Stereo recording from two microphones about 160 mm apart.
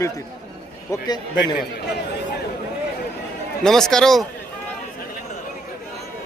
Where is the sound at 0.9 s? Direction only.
25° left (ahead or behind).